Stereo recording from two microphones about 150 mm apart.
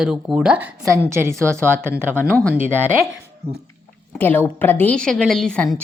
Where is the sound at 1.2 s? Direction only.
20° right (ahead or behind).